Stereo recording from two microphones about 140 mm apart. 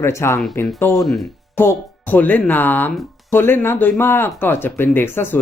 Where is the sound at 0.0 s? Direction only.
20° left (ahead or behind).